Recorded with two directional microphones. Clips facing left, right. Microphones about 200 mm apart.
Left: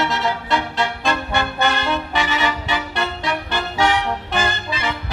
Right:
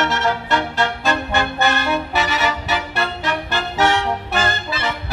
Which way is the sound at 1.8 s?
10° right (ahead or behind).